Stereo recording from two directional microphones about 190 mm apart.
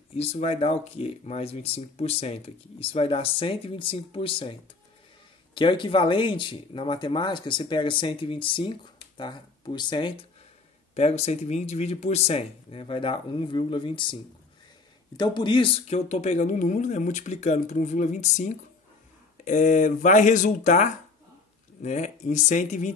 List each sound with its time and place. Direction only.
0.1 s speech: 35° left (ahead or behind)
15.1 s speech: 20° left (ahead or behind); by 22.9 s 40° left (ahead or behind)